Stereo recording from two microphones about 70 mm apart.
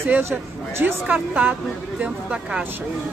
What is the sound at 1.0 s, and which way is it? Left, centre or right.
Speech, right.